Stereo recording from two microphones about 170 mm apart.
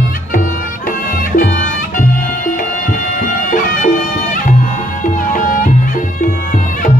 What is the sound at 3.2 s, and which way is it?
Music, 50° left (ahead or behind).